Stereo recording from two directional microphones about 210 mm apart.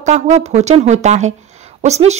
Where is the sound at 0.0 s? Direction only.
30° right (ahead or behind).